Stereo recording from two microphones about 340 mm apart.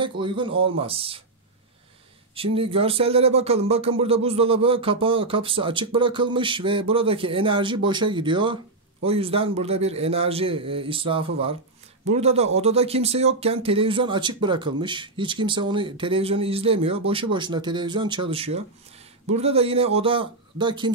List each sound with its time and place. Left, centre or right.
0.0 s speech: centre
2.3 s speech: centre